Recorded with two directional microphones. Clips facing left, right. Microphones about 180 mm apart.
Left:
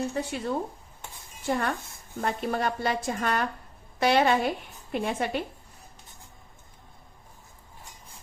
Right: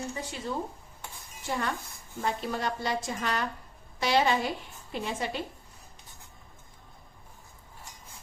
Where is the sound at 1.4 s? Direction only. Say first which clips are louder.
Left 4 dB; 55° left (ahead or behind).